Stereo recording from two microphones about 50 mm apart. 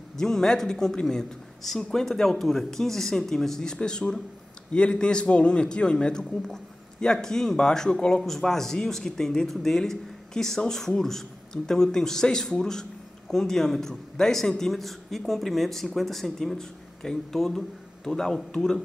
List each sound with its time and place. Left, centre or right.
0.2 s a man's voice: centre